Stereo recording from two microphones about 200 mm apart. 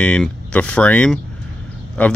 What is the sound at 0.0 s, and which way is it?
Speech, 5° left (ahead or behind).